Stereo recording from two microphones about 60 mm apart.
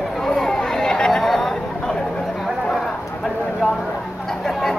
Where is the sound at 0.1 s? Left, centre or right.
Centre.